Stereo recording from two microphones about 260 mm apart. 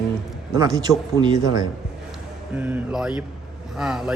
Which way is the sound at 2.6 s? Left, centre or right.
Centre.